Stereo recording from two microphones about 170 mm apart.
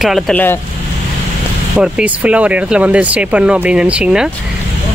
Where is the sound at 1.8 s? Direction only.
10° right (ahead or behind).